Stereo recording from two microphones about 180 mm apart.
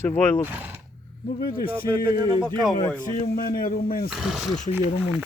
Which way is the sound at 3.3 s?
55° left (ahead or behind).